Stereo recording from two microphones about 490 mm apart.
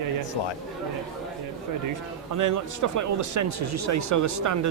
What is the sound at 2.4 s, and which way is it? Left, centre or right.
A man's voice, right.